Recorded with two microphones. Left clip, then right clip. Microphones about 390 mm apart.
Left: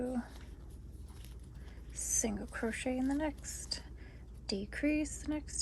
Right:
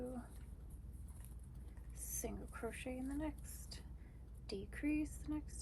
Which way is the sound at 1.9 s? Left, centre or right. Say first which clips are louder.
Left 12 dB; centre.